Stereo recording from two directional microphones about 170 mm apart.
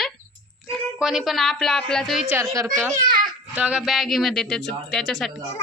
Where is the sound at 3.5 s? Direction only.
5° right (ahead or behind).